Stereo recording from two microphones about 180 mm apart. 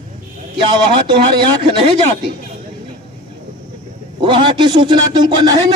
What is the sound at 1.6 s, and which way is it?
Speech, 25° right (ahead or behind).